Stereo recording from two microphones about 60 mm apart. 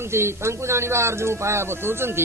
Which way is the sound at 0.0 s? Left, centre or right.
Right.